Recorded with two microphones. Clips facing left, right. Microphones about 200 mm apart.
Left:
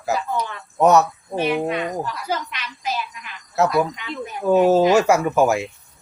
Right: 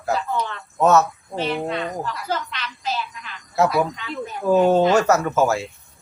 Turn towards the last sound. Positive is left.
turn(degrees=15)  # may be behind; listen again after turning